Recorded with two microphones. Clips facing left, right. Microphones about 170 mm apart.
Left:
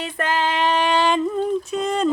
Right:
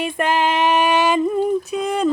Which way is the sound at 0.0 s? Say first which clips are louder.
Right 4 dB; 10° right (ahead or behind).